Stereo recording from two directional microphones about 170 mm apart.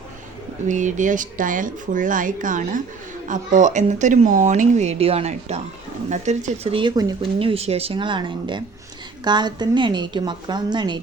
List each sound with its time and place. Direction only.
0.7 s a woman's voice: 45° right (ahead or behind); by 11.0 s 25° right (ahead or behind)